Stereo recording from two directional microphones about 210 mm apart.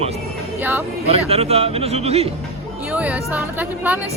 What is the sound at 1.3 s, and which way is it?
Speech, 30° right (ahead or behind).